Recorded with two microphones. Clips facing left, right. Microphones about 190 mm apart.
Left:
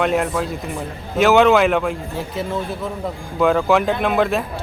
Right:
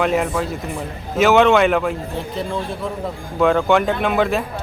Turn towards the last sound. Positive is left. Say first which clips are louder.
# even
turn(degrees=0)  # may be behind; listen again after turning